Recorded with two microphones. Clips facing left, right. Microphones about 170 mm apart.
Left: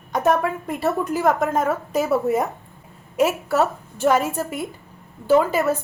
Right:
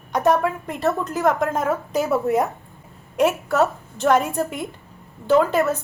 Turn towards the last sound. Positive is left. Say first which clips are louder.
# even
turn(degrees=5)  # may be behind; listen again after turning